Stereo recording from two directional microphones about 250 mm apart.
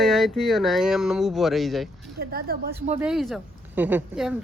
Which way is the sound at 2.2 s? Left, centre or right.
Right.